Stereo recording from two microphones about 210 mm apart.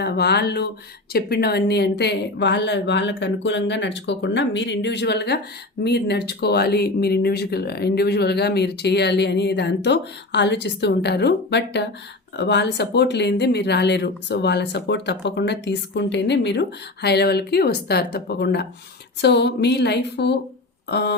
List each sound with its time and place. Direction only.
0.0 s speech: 50° left (ahead or behind)